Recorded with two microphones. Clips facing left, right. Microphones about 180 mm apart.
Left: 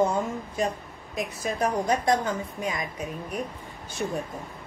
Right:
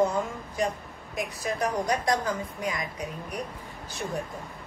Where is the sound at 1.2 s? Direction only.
25° left (ahead or behind).